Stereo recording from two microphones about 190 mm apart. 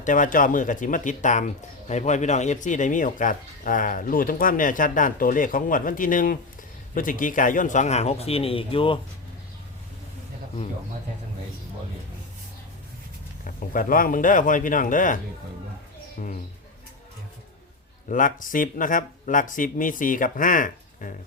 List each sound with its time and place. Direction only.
0.0 s speech: 45° left (ahead or behind)
13.6 s speech: 45° left (ahead or behind)
18.1 s speech: 45° left (ahead or behind)